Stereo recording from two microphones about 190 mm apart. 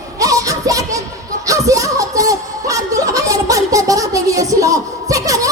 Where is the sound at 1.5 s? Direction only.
15° right (ahead or behind).